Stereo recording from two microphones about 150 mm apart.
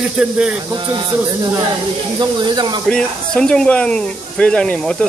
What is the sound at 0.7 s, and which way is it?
Speech, 25° right (ahead or behind).